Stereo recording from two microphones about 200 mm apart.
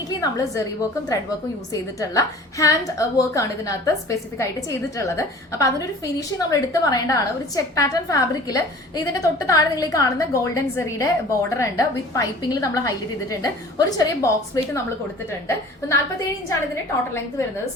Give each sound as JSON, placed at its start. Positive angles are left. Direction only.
{"t": 0.1, "sound": "a woman's voice", "side_deg": 20}